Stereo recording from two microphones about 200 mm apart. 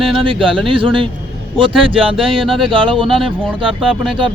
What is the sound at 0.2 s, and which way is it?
Speech, 25° right (ahead or behind).